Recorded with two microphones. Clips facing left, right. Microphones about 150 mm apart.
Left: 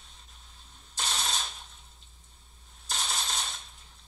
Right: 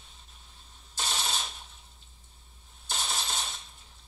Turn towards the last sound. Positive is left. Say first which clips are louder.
# even
turn(degrees=0)  # may be behind; listen again after turning